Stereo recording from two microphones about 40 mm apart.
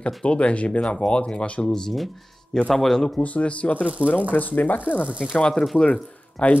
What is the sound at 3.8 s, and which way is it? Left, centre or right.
Speech, right.